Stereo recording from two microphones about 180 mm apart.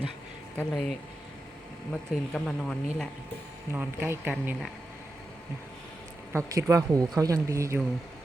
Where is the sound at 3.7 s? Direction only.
10° right (ahead or behind).